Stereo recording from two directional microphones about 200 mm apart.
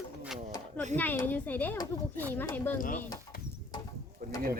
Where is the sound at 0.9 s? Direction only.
10° left (ahead or behind).